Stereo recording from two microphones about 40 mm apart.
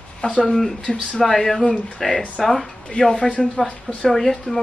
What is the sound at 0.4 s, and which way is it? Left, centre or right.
A woman's voice, centre.